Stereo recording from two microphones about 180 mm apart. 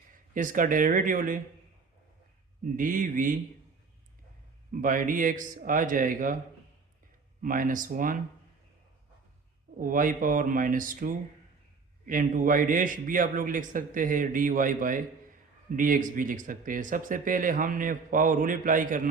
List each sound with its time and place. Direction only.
0.3 s speech: 50° right (ahead or behind)
2.7 s speech: 50° right (ahead or behind)
4.7 s speech: 50° right (ahead or behind)
7.4 s speech: 50° right (ahead or behind)
9.7 s speech: 50° right (ahead or behind)